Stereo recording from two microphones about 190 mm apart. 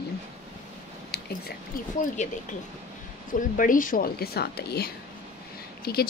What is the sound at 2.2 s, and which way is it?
Speech, 40° left (ahead or behind).